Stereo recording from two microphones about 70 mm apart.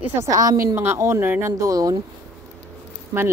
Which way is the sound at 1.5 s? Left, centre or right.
Right.